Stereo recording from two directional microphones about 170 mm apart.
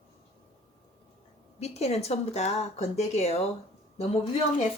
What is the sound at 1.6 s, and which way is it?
Speech, 40° left (ahead or behind).